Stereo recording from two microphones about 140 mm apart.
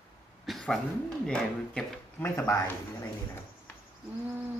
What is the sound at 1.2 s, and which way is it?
Speech, 5° left (ahead or behind).